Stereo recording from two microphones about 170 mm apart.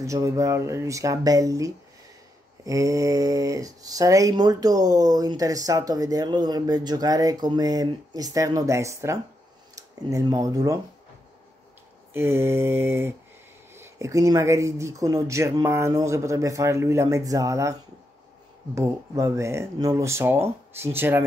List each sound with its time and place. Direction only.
0.0 s speech: 20° right (ahead or behind)
12.1 s speech: 15° right (ahead or behind)
18.8 s speech: 15° right (ahead or behind)